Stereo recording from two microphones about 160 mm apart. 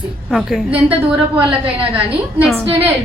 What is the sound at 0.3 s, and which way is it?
Speech, centre (ahead or behind).